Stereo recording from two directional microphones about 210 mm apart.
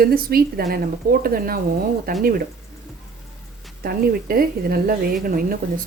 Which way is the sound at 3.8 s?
45° right (ahead or behind).